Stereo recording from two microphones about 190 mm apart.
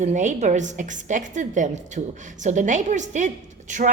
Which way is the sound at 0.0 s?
40° right (ahead or behind).